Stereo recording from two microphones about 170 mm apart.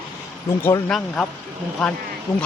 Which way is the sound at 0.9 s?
5° left (ahead or behind).